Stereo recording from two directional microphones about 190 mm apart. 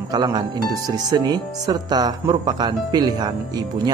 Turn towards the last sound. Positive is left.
turn(degrees=-20)  # may be behind; listen again after turning